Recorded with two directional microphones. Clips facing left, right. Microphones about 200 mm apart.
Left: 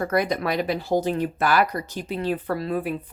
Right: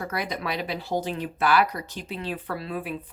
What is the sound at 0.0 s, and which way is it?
Speech, 50° left (ahead or behind).